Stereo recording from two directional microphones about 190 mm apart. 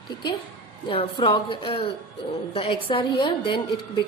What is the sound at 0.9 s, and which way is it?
A woman's voice, 25° left (ahead or behind).